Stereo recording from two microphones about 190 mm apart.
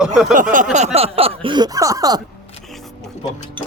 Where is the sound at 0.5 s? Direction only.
40° right (ahead or behind); by 2.2 s 20° right (ahead or behind).